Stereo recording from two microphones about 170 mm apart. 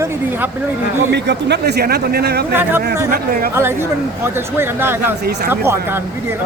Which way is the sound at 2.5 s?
10° right (ahead or behind).